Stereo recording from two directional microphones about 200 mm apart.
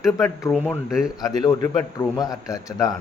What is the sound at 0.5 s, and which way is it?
Speech, 5° left (ahead or behind).